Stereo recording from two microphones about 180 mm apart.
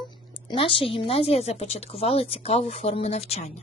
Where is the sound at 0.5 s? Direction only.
30° left (ahead or behind).